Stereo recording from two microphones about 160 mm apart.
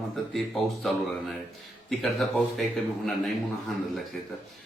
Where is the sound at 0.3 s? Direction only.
Centre (ahead or behind).